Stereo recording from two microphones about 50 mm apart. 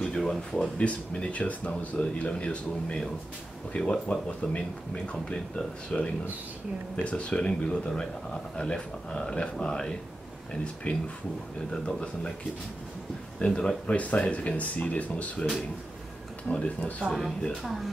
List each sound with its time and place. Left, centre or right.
0.0 s a sound: centre
0.8 s speech: left
13.4 s speech: centre
13.8 s speech: left
15.3 s speech: centre
16.4 s speech: left